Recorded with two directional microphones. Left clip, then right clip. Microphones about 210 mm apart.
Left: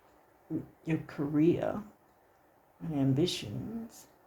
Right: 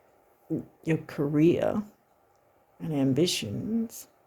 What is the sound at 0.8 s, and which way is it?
Speech, 55° right (ahead or behind).